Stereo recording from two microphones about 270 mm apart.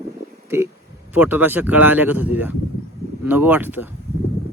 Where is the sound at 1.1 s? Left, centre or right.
Centre.